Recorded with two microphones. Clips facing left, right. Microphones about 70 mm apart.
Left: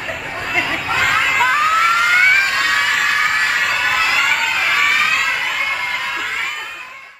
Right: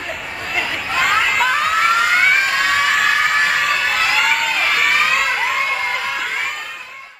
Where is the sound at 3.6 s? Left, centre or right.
Centre.